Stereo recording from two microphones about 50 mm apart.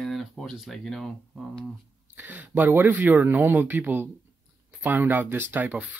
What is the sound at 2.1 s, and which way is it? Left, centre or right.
Speech, right.